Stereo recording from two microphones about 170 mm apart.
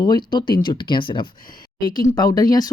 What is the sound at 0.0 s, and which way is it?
Speech, 25° left (ahead or behind).